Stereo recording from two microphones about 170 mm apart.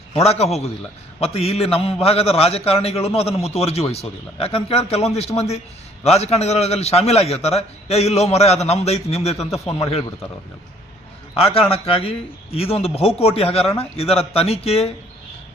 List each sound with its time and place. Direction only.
0.1 s a man's voice: 40° left (ahead or behind)
11.3 s a man's voice: 35° left (ahead or behind)